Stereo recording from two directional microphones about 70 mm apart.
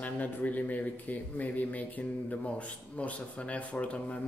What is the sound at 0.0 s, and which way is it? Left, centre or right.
Speech, left.